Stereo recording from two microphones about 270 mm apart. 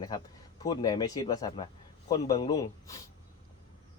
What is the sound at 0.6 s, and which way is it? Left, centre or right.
Speech, centre.